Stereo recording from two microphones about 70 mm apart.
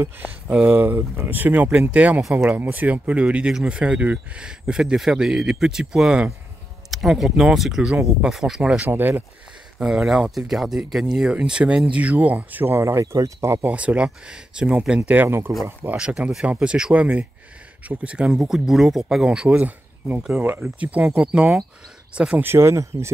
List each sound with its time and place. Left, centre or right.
0.7 s speech: right; by 8.8 s centre
8.8 s speech: right
9.8 s speech: centre; by 12.8 s right
12.8 s speech: right
13.7 s speech: centre
15.2 s speech: right
15.8 s speech: right
18.4 s speech: centre
20.8 s speech: centre
22.4 s speech: right